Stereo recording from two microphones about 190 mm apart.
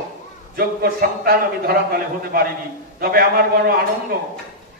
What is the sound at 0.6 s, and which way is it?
A man's voice, 50° right (ahead or behind).